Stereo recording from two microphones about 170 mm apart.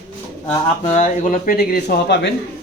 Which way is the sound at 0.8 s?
40° left (ahead or behind).